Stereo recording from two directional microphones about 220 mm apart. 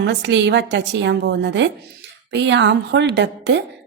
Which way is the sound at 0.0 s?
55° right (ahead or behind).